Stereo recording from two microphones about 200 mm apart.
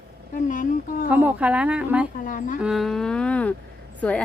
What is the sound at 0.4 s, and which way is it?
Speech, 40° left (ahead or behind).